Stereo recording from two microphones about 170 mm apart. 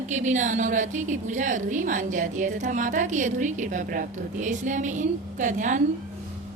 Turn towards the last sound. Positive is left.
turn(degrees=-50)  # may be behind; listen again after turning